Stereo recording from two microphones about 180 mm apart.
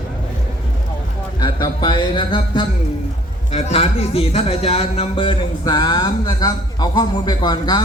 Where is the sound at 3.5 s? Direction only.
35° left (ahead or behind).